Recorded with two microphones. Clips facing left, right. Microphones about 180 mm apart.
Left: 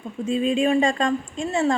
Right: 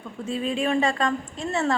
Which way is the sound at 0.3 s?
25° left (ahead or behind).